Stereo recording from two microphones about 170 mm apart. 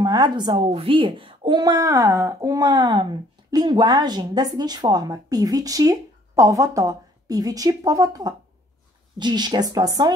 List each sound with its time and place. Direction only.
0.0 s speech: 25° right (ahead or behind)